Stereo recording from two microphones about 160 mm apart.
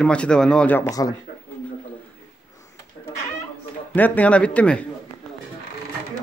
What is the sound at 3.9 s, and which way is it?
Speech, 10° left (ahead or behind).